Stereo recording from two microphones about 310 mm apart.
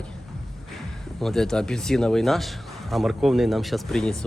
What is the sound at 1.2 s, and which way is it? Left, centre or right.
Speech, centre.